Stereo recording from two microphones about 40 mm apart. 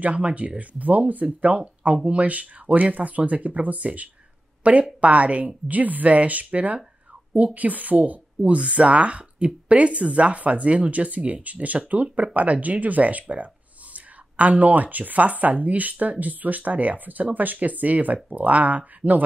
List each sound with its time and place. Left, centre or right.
0.0 s speech: right